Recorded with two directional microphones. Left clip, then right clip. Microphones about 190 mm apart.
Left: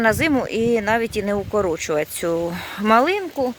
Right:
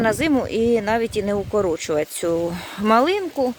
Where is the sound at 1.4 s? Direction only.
10° left (ahead or behind).